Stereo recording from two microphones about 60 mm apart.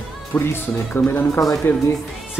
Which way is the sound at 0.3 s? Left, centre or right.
Left.